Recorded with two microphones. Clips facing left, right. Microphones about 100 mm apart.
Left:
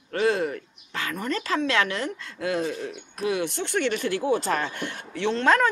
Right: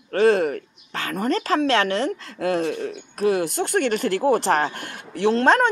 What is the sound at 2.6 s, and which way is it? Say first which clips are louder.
Speech: right 4 dB; 55° right (ahead or behind).